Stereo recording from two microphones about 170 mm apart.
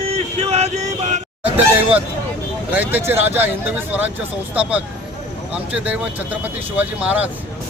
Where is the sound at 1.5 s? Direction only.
10° right (ahead or behind).